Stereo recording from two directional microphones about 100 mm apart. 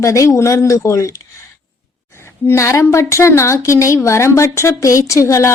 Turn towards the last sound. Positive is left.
turn(degrees=30)  # may be behind; listen again after turning